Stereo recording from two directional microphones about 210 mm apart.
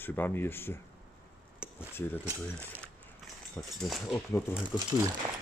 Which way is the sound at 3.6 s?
10° left (ahead or behind).